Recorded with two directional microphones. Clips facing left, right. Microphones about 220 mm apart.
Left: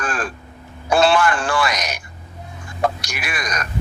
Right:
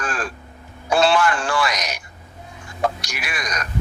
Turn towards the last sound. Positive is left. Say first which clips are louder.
# left 2 dB
turn(degrees=55)  # may be behind; listen again after turning